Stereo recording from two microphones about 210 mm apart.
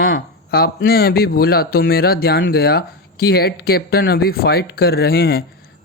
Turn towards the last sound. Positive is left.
turn(degrees=50)  # may be behind; listen again after turning